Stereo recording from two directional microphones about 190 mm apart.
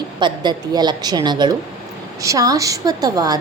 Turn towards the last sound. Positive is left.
turn(degrees=-20)  # may be behind; listen again after turning